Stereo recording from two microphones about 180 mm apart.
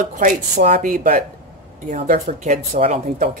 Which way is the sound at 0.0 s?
50° right (ahead or behind).